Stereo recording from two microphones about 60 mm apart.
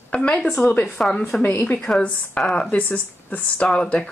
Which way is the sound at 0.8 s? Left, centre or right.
Centre.